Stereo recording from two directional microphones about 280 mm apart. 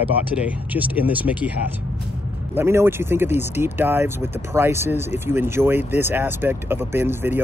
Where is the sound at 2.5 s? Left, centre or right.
Centre.